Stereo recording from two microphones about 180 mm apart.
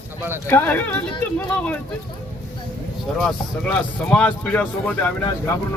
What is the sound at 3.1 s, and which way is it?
A man's voice, centre (ahead or behind).